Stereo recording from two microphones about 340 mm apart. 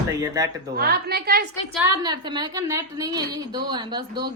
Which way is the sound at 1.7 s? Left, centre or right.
Centre.